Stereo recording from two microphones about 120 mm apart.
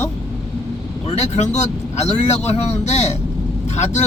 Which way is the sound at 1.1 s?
70° left (ahead or behind).